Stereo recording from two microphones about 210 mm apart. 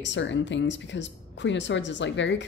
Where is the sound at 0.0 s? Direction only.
60° left (ahead or behind).